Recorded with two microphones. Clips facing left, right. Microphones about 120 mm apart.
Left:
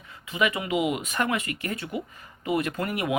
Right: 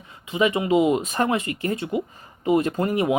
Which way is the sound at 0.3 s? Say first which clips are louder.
Right 6 dB; 25° right (ahead or behind).